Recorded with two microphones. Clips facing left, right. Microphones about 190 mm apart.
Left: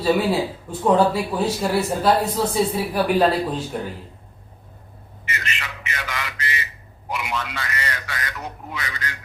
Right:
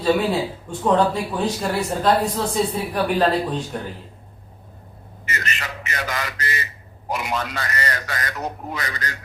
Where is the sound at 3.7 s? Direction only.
5° left (ahead or behind).